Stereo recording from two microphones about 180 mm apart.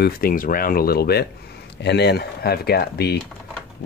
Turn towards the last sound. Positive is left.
turn(degrees=60)  # may be behind; listen again after turning